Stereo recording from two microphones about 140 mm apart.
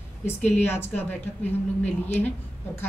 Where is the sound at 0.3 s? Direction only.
15° left (ahead or behind).